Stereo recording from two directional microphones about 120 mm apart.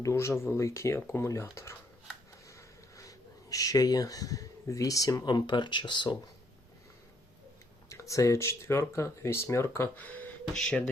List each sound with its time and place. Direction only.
0.0 s speech: 25° left (ahead or behind); by 6.1 s 40° left (ahead or behind)
7.9 s speech: 25° left (ahead or behind); by 10.8 s 5° left (ahead or behind)